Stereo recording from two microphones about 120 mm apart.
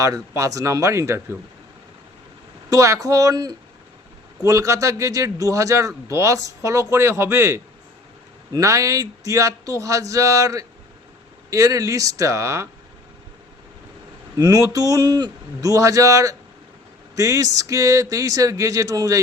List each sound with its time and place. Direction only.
0.0 s speech: 30° right (ahead or behind)
2.6 s speech: 25° right (ahead or behind)
14.3 s speech: 30° right (ahead or behind)